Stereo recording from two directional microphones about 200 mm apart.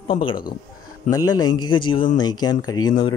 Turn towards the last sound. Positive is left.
turn(degrees=20)  # may be behind; listen again after turning